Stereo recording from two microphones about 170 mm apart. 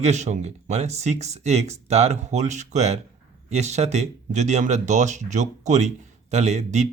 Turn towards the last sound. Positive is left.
turn(degrees=-40)  # may be behind; listen again after turning